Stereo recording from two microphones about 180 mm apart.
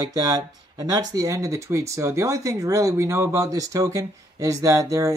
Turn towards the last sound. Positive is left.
turn(degrees=-15)  # may be behind; listen again after turning